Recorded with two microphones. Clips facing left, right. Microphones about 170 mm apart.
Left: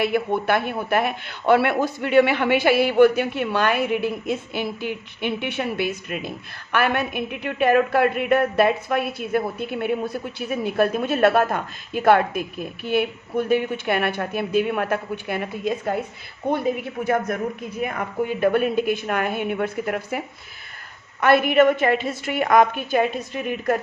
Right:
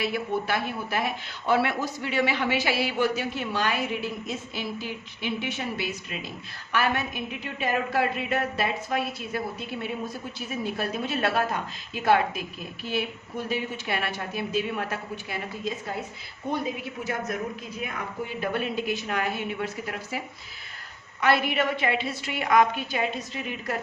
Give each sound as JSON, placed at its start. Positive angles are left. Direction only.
{"t": 0.0, "sound": "a man's voice", "side_deg": 55}